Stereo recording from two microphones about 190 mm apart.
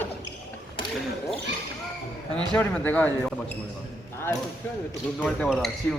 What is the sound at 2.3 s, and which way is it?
Speech, 10° left (ahead or behind).